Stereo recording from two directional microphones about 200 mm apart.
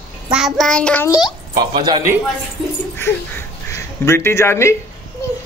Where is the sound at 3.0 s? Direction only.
10° left (ahead or behind).